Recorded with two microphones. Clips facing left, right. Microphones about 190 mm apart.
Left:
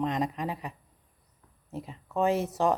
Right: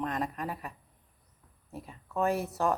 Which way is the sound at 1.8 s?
20° left (ahead or behind).